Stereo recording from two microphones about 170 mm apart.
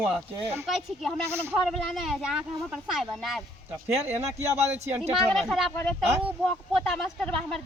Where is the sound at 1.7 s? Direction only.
Centre (ahead or behind).